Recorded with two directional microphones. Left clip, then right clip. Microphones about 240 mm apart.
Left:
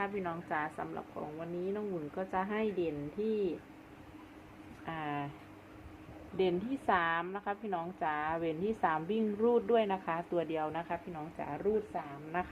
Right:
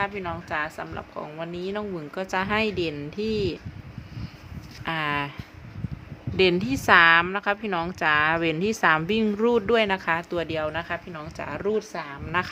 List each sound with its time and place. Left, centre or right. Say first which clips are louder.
0.0 s a woman's voice: right 8 dB; centre
1.4 s speech: right 7 dB; right
4.9 s speech: right 12 dB; right
6.3 s a woman's voice: right 11 dB; right